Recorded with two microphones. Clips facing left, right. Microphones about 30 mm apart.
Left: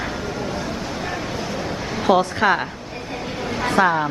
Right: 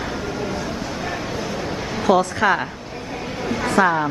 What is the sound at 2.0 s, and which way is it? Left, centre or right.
Speech, centre.